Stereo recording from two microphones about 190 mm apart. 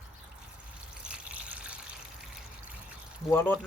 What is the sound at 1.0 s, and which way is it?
Water, 5° right (ahead or behind).